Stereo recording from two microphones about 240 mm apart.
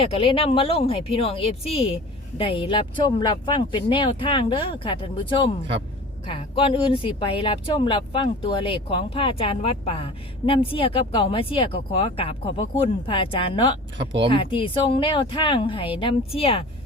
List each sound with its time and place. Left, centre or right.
0.0 s speech: left